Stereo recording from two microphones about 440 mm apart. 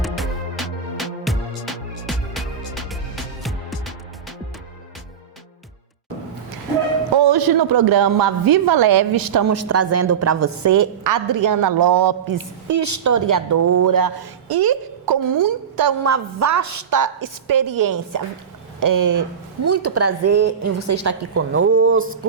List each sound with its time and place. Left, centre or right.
0.0 s music: centre
7.2 s a woman's voice: right
16.1 s a woman's voice: right
19.6 s a woman's voice: right